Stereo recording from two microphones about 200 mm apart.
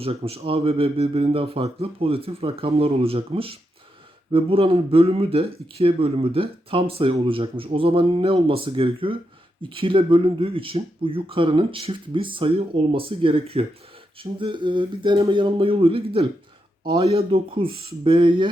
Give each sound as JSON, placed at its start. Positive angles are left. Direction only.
{"t": 0.0, "sound": "speech", "side_deg": -30}